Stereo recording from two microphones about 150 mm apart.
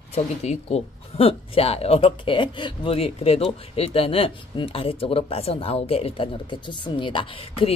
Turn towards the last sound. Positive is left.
turn(degrees=40)  # may be behind; listen again after turning